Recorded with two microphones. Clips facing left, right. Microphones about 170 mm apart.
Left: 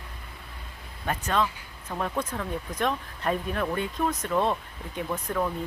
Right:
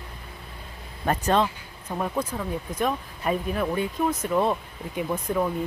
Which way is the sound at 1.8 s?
10° right (ahead or behind).